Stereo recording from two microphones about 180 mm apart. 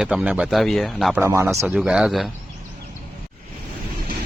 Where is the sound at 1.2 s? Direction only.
15° right (ahead or behind).